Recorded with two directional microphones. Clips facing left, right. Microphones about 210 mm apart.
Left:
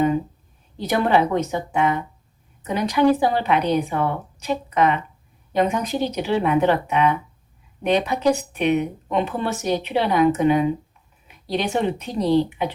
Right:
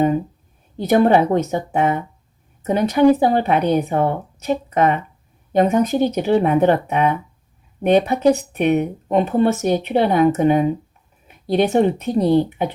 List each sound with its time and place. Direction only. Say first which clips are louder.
0.8 s speech: right 5 dB; 45° right (ahead or behind)